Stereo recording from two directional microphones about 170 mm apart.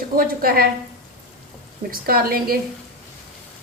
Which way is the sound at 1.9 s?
60° right (ahead or behind).